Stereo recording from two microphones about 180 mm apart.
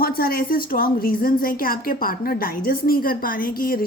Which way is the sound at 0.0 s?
55° left (ahead or behind).